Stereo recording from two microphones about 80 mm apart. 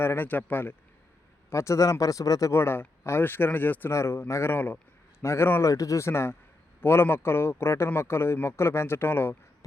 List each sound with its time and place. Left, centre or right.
0.0 s speech: left
1.5 s speech: left
2.5 s speech: left
5.6 s speech: left